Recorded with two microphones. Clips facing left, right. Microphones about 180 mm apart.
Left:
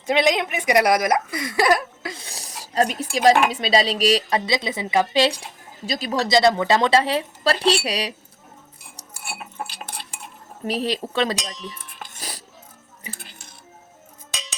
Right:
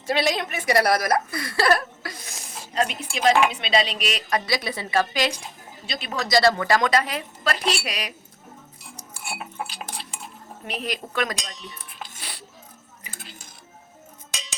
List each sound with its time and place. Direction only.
0.1 s a woman's voice: 20° left (ahead or behind)
2.1 s speech: 35° left (ahead or behind); by 5.2 s 20° left (ahead or behind)
5.8 s speech: 40° left (ahead or behind)
6.3 s speech: 20° left (ahead or behind)
10.7 s speech: 30° left (ahead or behind)
12.0 s music: 40° left (ahead or behind)